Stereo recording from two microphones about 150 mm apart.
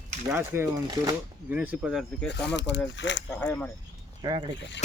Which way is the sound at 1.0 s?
25° right (ahead or behind).